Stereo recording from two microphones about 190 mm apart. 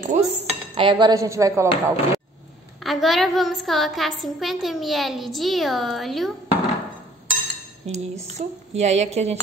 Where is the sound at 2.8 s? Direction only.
Centre (ahead or behind).